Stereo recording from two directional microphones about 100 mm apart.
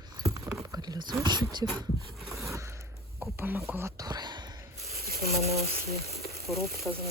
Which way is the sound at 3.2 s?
20° right (ahead or behind).